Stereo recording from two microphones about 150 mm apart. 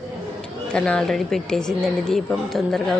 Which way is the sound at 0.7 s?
5° left (ahead or behind).